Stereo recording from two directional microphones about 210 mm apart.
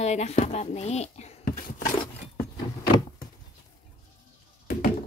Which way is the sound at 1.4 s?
40° left (ahead or behind).